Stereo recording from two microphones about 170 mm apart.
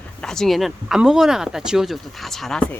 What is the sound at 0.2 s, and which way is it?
Speech, 5° left (ahead or behind).